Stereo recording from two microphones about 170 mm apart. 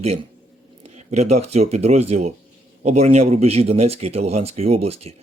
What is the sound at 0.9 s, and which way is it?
Speech, 40° right (ahead or behind).